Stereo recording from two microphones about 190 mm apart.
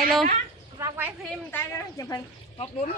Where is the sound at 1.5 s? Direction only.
15° left (ahead or behind).